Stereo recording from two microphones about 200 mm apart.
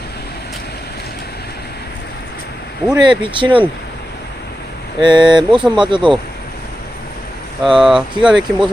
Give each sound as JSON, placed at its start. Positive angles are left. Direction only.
{"t": 2.9, "sound": "speech", "side_deg": -25}
{"t": 4.9, "sound": "speech", "side_deg": -25}
{"t": 7.6, "sound": "speech", "side_deg": 0}